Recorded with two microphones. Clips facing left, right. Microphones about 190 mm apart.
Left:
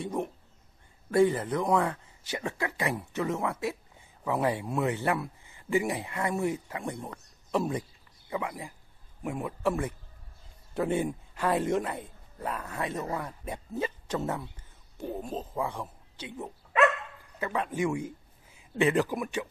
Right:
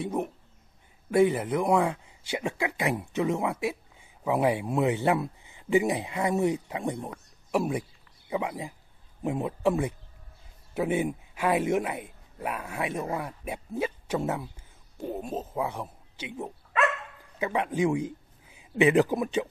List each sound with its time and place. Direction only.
0.0 s a sound: 5° right (ahead or behind)
1.1 s a man's voice: 10° right (ahead or behind)
17.4 s a man's voice: 15° right (ahead or behind)